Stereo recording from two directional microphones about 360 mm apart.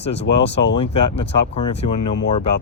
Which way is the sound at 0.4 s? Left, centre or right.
Left.